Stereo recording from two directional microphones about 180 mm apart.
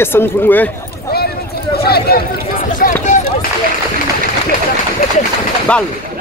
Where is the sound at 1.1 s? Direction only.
60° left (ahead or behind); by 3.5 s 45° left (ahead or behind).